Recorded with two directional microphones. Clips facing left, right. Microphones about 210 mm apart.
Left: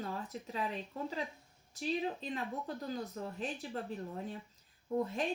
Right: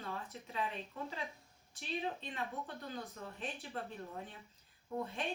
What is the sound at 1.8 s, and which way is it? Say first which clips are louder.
Speech: left 5 dB; 35° left (ahead or behind).